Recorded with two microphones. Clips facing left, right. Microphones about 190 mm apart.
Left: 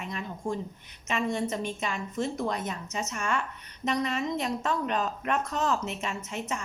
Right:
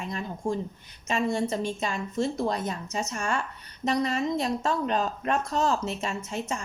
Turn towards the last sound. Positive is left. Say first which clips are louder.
# right 2 dB
turn(degrees=-30)  # may be behind; listen again after turning